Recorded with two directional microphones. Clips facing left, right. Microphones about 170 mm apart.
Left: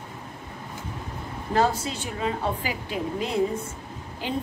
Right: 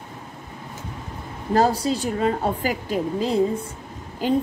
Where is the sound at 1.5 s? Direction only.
35° right (ahead or behind).